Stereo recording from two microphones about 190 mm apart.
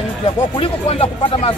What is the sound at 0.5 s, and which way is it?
Speech, 30° left (ahead or behind).